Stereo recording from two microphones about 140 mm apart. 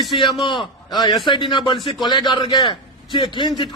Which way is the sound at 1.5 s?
35° left (ahead or behind).